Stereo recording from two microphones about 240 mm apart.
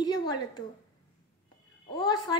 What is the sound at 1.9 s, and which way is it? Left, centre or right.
Speech, centre.